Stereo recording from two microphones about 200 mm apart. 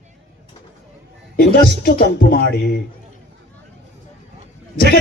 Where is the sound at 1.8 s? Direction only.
45° left (ahead or behind).